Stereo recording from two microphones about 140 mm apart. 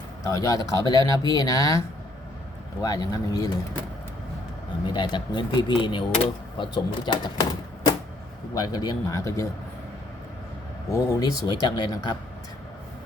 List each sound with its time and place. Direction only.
0.3 s speech: 25° left (ahead or behind)
2.8 s speech: 25° left (ahead or behind)
4.9 s speech: 35° left (ahead or behind)
8.5 s speech: 30° left (ahead or behind)
10.8 s speech: 20° left (ahead or behind)